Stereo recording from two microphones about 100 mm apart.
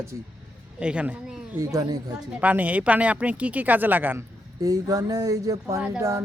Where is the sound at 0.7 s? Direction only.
10° right (ahead or behind).